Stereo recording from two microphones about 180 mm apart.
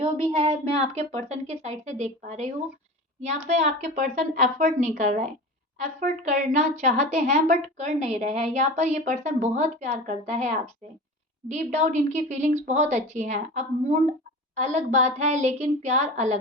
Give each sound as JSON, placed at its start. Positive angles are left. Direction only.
{"t": 0.3, "sound": "a woman's voice", "side_deg": -30}